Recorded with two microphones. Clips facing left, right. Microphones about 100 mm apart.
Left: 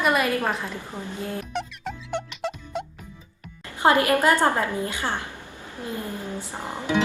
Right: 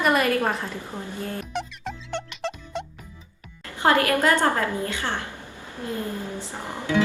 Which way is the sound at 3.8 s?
20° left (ahead or behind).